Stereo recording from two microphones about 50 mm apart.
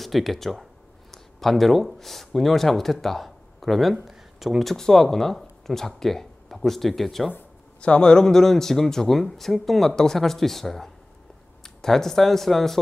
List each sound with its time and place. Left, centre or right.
0.0 s speech: centre
4.7 s speech: centre
7.8 s speech: centre